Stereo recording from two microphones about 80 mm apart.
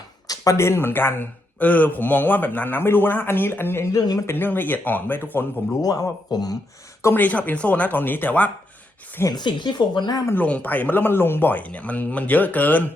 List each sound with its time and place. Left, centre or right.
0.3 s a man's voice: left
3.9 s speech: left
4.3 s a man's voice: left
5.8 s speech: left
7.0 s a man's voice: left
9.3 s speech: left
10.3 s a man's voice: centre